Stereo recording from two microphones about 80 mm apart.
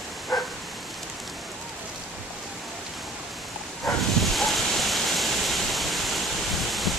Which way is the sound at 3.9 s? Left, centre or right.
Centre.